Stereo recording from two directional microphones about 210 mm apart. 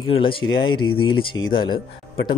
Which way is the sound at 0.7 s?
85° left.